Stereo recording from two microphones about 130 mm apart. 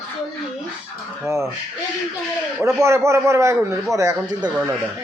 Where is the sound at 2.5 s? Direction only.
20° right (ahead or behind).